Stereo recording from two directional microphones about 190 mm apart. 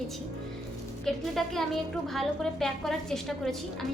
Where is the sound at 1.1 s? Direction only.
Centre (ahead or behind).